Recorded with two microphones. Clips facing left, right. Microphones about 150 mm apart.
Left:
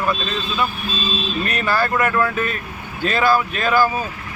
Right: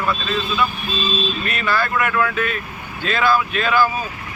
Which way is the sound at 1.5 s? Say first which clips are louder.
Left 2 dB; 40° left (ahead or behind).